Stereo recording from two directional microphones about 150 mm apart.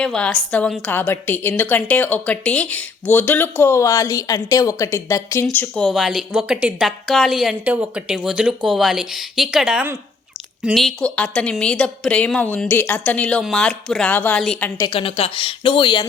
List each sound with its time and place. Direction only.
0.0 s a woman's voice: 5° left (ahead or behind)
14.8 s a woman's voice: 40° left (ahead or behind)